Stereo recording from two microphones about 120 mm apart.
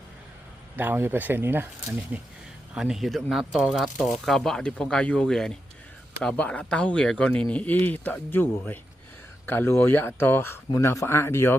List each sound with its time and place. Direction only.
0.8 s speech: 15° right (ahead or behind)
2.7 s speech: 5° right (ahead or behind); by 11.5 s 20° left (ahead or behind)